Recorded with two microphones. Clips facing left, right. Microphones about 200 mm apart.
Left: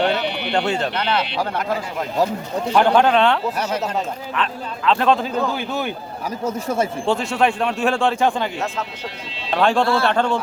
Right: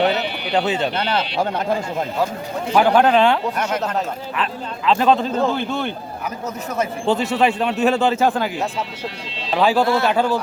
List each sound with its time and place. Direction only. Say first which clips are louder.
0.5 s speech: right 2 dB; 5° right (ahead or behind)
0.9 s speech: right 1 dB; 30° right (ahead or behind)
2.7 s speech: right 1 dB; 5° right (ahead or behind)
4.9 s speech: right 1 dB; centre (ahead or behind)
6.4 s speech: left 3 dB; 30° left (ahead or behind)
7.0 s speech: right 4 dB; centre (ahead or behind)
9.5 s speech: right 1 dB; 5° right (ahead or behind)
9.8 s speech: right 1 dB; 20° right (ahead or behind)
10.1 s speech: right 1 dB; 5° right (ahead or behind)